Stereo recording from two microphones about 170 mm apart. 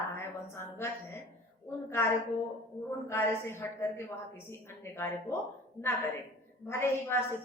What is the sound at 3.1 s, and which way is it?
Speech, 15° left (ahead or behind).